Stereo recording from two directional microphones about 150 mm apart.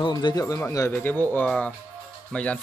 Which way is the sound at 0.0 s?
30° left (ahead or behind).